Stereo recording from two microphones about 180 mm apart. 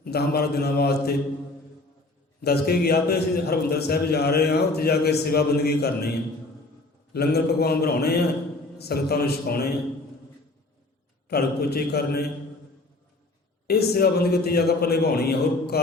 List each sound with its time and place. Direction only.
0.0 s a man's voice: 60° left (ahead or behind)
2.4 s a man's voice: 60° left (ahead or behind)
7.1 s a man's voice: 60° left (ahead or behind)
11.3 s a man's voice: 60° left (ahead or behind)
13.7 s a man's voice: 60° left (ahead or behind)